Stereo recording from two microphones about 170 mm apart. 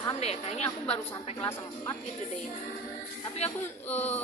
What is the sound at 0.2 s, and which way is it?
Speech, 40° left (ahead or behind).